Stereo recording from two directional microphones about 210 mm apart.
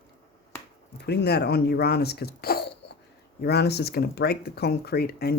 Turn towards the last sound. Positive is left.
turn(degrees=50)  # may be behind; listen again after turning